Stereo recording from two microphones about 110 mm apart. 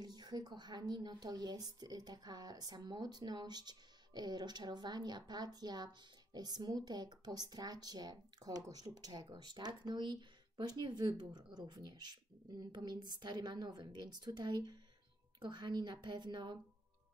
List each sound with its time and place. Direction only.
0.0 s a woman's voice: 40° right (ahead or behind)